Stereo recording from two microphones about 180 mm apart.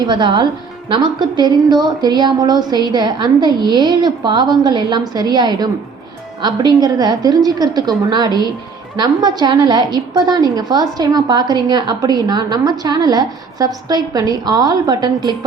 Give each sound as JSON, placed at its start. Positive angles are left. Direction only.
{"t": 0.0, "sound": "a woman's voice", "side_deg": -25}